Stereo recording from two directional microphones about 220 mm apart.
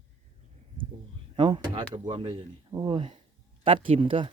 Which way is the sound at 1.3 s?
20° right (ahead or behind).